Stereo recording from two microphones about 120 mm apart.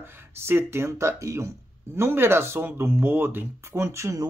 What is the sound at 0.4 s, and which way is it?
Speech, 20° right (ahead or behind).